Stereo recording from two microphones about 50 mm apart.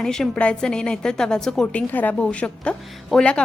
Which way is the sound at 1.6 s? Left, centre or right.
Left.